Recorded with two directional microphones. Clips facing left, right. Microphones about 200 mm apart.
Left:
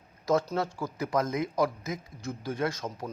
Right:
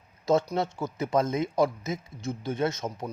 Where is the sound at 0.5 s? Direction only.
25° right (ahead or behind).